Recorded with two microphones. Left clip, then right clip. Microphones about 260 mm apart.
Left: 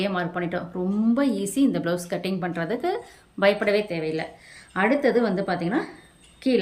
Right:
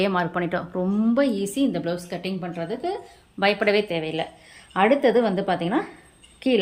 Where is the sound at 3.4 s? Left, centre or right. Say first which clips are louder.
Even; centre.